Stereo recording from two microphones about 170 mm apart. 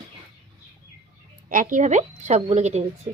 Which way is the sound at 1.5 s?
50° right (ahead or behind).